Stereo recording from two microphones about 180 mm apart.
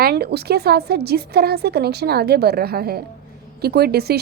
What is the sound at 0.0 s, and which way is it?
Speech, 65° right (ahead or behind).